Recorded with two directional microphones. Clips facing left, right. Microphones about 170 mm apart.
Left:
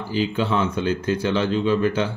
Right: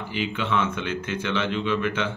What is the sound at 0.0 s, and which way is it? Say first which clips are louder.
Speech: left 6 dB; 35° left (ahead or behind).